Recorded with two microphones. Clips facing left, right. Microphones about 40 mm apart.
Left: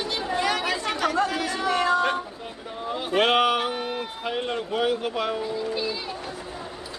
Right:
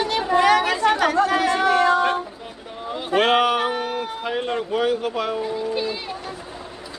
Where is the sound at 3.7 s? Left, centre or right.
Right.